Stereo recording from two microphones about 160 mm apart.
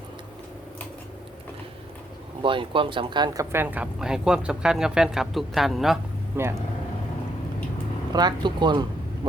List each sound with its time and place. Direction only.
2.4 s speech: 30° right (ahead or behind); by 6.0 s centre (ahead or behind)
6.3 s speech: 15° right (ahead or behind)
8.1 s speech: 25° right (ahead or behind)